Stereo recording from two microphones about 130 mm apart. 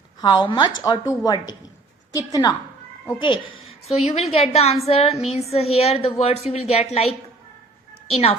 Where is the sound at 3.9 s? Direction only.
50° left (ahead or behind).